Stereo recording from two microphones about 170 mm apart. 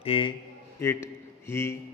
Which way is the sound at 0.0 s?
30° left (ahead or behind).